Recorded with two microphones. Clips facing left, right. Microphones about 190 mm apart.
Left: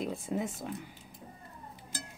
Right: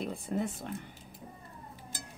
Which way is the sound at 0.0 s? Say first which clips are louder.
Even; 5° left (ahead or behind).